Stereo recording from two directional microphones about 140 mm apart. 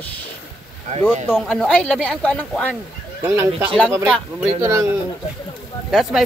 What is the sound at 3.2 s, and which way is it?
Speech, 20° right (ahead or behind).